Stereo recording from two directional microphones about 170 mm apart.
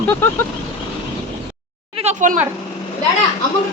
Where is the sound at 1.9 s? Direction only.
45° right (ahead or behind).